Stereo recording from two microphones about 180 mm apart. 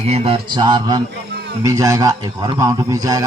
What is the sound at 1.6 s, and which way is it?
A man's voice, 20° right (ahead or behind).